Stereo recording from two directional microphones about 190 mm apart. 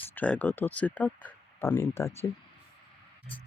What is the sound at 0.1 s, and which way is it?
Speech, 10° left (ahead or behind).